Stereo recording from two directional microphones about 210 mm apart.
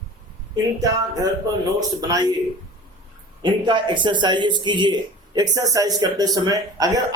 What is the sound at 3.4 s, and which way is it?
Speech, 20° right (ahead or behind).